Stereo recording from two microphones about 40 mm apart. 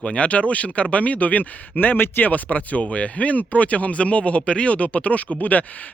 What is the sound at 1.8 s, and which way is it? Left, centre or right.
Speech, left.